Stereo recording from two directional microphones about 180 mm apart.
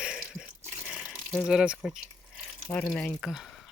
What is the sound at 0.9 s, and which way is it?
Water, 5° right (ahead or behind).